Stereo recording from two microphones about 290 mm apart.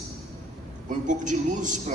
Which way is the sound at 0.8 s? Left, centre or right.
Right.